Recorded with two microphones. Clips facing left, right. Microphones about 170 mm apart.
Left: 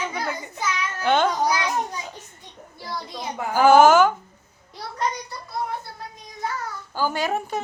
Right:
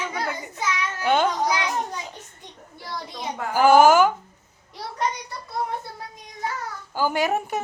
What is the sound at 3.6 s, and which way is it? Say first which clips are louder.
Speech: left 1 dB; 10° right (ahead or behind).